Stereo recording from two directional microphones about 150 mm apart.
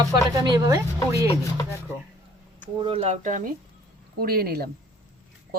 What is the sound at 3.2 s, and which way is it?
Speech, 60° right (ahead or behind).